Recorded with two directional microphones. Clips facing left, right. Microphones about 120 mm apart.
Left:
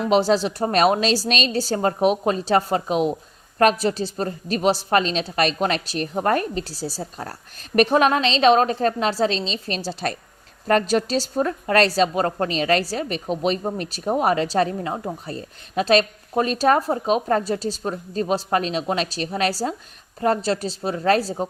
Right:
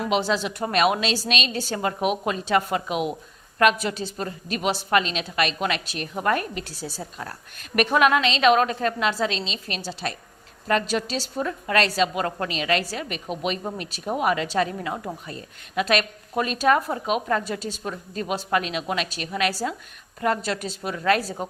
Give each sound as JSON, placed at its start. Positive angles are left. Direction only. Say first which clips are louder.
{"t": 0.1, "sound": "a woman's voice", "louder": "left 7 dB", "side_deg": 40}